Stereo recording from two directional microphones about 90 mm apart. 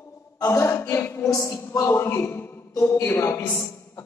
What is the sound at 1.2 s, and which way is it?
Speech, 45° left (ahead or behind).